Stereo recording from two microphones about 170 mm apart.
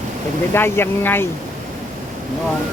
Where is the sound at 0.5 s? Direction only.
15° left (ahead or behind).